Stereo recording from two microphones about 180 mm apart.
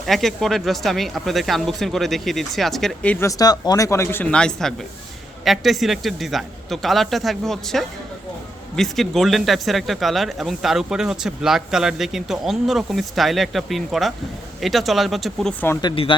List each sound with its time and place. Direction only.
0.0 s speech: centre (ahead or behind)
15.6 s speech: 15° left (ahead or behind)
15.9 s speech: 30° left (ahead or behind)